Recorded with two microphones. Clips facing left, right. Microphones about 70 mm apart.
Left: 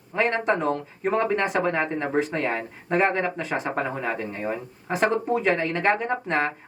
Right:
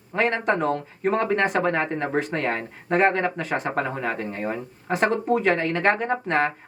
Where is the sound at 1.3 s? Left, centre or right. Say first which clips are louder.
Right 2 dB; right.